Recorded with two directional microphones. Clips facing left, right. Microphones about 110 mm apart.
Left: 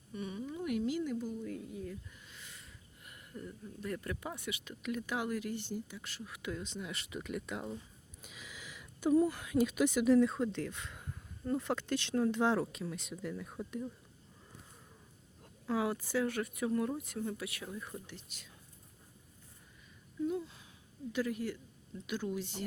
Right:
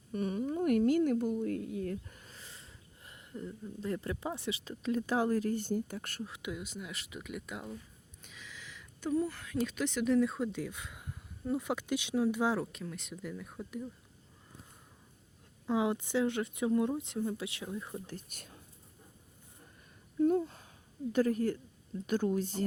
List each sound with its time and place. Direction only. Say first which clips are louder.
0.1 s a sound: right 7 dB; 45° right (ahead or behind); by 2.0 s 65° right (ahead or behind)
2.0 s speech: right 2 dB; 45° right (ahead or behind)
6.2 s speech: right 2 dB; 25° right (ahead or behind)
6.5 s speech: left 5 dB; 10° right (ahead or behind)
8.2 s speech: even; 10° left (ahead or behind)
15.7 s speech: right 3 dB; 20° right (ahead or behind)
18.0 s speech: right 6 dB; 45° right (ahead or behind)
20.1 s a sound: right 8 dB; 50° right (ahead or behind)
21.1 s speech: right 6 dB; 45° right (ahead or behind)